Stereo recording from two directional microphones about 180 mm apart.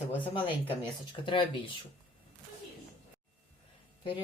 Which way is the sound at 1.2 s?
25° left (ahead or behind).